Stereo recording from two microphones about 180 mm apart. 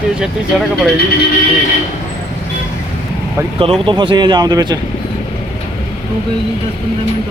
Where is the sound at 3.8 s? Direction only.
25° right (ahead or behind).